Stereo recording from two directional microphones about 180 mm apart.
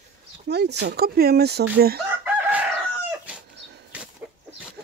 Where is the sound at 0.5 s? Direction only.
65° right (ahead or behind).